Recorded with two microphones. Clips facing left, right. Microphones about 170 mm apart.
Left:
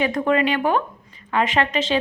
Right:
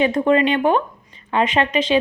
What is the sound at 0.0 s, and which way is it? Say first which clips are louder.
A woman's voice: right 3 dB; 25° right (ahead or behind).